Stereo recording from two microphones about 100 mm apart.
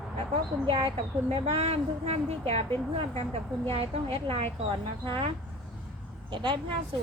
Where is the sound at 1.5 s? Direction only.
90° right; by 4.5 s 70° right (ahead or behind).